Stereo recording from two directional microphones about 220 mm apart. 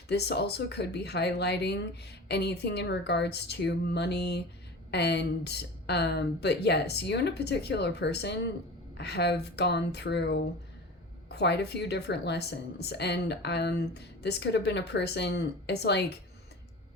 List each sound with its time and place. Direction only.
0.1 s a woman's voice: 50° left (ahead or behind)